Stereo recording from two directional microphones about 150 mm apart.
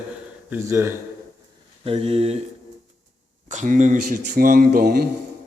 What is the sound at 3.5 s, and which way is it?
Speech, 60° right (ahead or behind).